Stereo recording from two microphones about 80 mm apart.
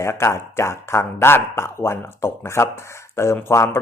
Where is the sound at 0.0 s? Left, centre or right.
Left.